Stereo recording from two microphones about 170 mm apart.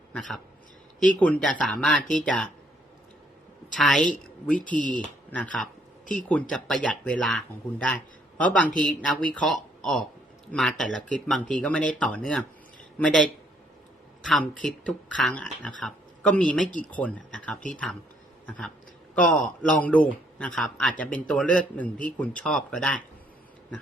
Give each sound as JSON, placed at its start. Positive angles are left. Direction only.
{"t": 0.1, "sound": "speech", "side_deg": 5}
{"t": 3.8, "sound": "speech", "side_deg": 0}
{"t": 4.6, "sound": "speech", "side_deg": 50}
{"t": 5.3, "sound": "speech", "side_deg": 5}